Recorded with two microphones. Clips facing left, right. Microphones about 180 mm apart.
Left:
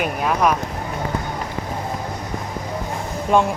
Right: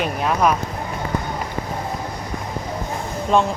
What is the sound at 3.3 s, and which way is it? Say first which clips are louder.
Speech: left 1 dB; 10° left (ahead or behind).